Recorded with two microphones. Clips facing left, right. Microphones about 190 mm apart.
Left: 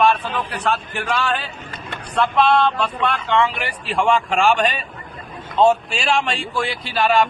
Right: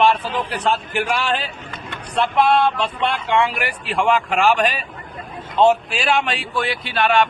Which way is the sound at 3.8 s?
Centre (ahead or behind).